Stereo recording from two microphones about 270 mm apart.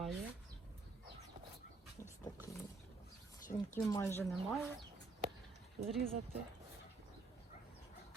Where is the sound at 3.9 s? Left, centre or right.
Centre.